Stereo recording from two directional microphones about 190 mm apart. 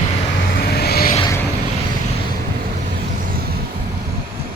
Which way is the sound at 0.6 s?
55° left (ahead or behind).